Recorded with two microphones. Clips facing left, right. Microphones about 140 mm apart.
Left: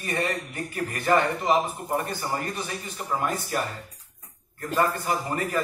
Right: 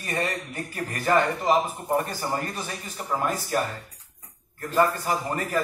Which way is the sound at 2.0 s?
40° right (ahead or behind).